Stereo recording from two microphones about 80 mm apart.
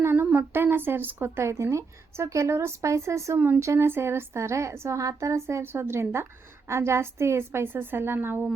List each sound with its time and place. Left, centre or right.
0.0 s a sound: right
0.3 s speech: right
3.3 s speech: right
3.6 s speech: right